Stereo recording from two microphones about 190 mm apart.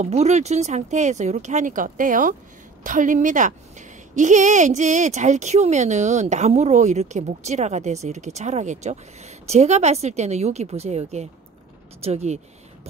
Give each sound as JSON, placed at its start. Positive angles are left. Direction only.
{"t": 0.0, "sound": "a woman's voice", "side_deg": -35}